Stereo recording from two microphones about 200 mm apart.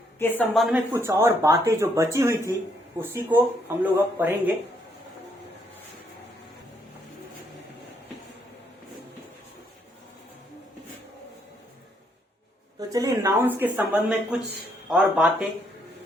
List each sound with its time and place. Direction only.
0.2 s speech: 10° left (ahead or behind)
0.9 s speech: 15° right (ahead or behind)
12.9 s speech: 15° right (ahead or behind)